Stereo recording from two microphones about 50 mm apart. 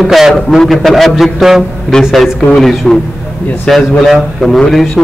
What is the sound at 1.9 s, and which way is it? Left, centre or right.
Speech, centre.